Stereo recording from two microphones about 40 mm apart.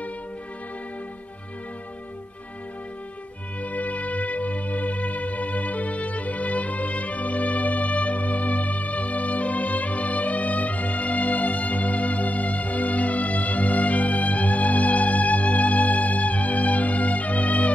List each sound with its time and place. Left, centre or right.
3.6 s music: left